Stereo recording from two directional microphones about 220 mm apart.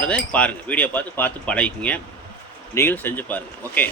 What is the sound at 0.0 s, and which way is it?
Speech, 5° left (ahead or behind).